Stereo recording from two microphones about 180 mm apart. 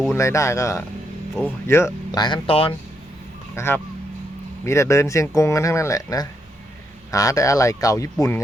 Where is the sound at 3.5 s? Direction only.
15° left (ahead or behind).